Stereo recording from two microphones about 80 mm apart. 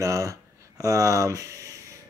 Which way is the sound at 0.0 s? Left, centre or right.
Right.